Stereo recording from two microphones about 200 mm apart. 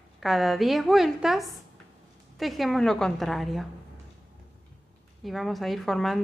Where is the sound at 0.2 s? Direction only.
Centre (ahead or behind).